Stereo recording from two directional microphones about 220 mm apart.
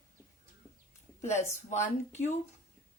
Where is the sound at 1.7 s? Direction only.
35° left (ahead or behind).